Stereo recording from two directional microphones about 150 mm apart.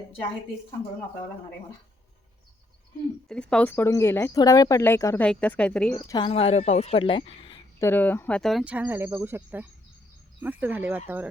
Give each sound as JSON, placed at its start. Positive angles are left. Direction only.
{"t": 3.2, "sound": "speech", "side_deg": 5}
{"t": 6.1, "sound": "speech", "side_deg": 30}
{"t": 6.3, "sound": "speech", "side_deg": 45}
{"t": 7.8, "sound": "speech", "side_deg": 15}
{"t": 8.6, "sound": "speech", "side_deg": -10}